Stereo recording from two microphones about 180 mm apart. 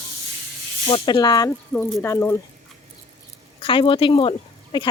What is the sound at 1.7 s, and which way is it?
Speech, 10° left (ahead or behind).